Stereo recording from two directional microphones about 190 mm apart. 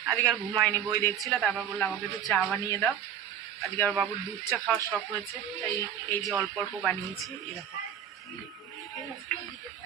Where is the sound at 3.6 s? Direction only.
10° left (ahead or behind).